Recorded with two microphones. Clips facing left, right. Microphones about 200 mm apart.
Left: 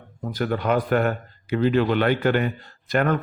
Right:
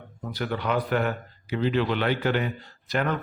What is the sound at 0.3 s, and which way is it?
Speech, 45° left (ahead or behind).